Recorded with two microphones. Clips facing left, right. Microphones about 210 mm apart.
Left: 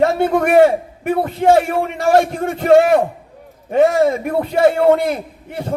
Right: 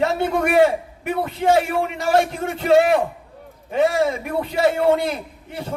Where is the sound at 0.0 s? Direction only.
50° left (ahead or behind).